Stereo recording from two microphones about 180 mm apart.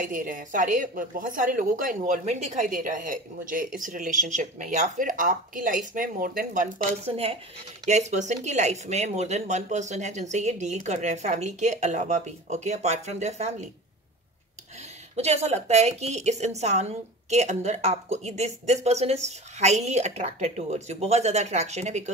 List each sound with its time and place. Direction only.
0.0 s a woman's voice: 50° right (ahead or behind)
15.1 s a woman's voice: 35° right (ahead or behind)